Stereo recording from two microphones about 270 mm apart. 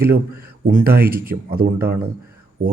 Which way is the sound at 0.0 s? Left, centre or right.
Right.